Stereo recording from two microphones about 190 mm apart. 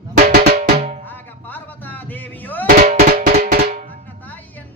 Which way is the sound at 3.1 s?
55° right (ahead or behind).